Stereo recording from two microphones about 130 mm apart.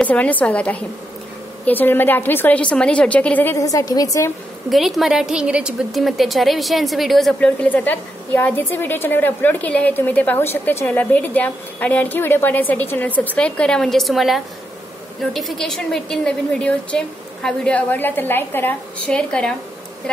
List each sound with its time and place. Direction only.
0.0 s a woman's voice: 10° left (ahead or behind)
3.5 s a woman's voice: 25° left (ahead or behind)
4.6 s a woman's voice: centre (ahead or behind)
7.3 s a woman's voice: 10° left (ahead or behind)